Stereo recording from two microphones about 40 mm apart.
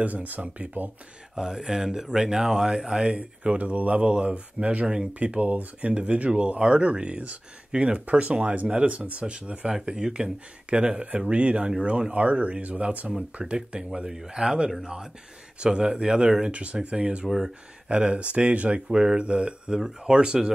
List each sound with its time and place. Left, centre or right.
0.0 s speech: right
1.3 s speech: centre
3.5 s speech: right
4.8 s speech: right
9.8 s speech: centre; by 13.1 s right
13.4 s speech: right
16.5 s speech: right
16.9 s speech: right
18.9 s speech: centre